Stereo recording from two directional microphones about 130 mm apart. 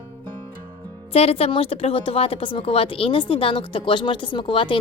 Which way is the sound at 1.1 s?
50° left (ahead or behind).